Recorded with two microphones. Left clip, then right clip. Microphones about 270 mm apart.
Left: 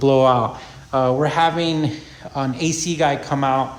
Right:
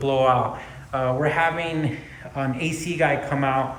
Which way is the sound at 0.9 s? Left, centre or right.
Centre.